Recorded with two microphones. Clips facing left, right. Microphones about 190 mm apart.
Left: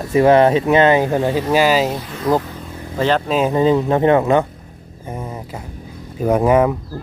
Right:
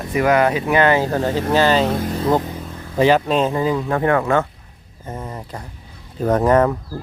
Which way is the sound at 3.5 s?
25° left (ahead or behind).